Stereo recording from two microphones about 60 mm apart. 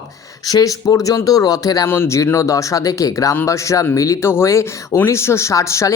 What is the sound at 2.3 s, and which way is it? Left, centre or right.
Speech, left.